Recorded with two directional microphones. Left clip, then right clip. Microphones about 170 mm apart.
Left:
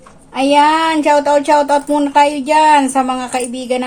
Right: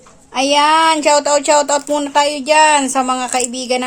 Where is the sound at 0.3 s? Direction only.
65° right (ahead or behind).